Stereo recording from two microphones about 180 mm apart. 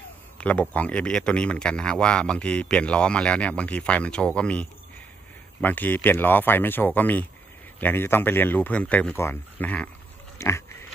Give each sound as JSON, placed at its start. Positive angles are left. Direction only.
{"t": 0.4, "sound": "speech", "side_deg": 10}
{"t": 10.3, "sound": "dog", "side_deg": 15}